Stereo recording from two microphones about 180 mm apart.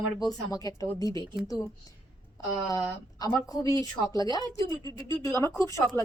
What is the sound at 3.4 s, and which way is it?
Speech, 20° left (ahead or behind).